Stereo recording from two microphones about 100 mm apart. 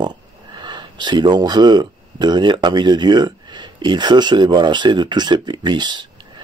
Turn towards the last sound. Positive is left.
turn(degrees=-50)  # may be behind; listen again after turning